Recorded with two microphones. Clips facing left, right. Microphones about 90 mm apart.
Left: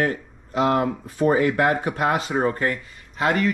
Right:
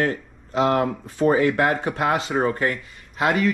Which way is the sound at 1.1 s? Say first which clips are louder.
Right 1 dB; 35° left (ahead or behind).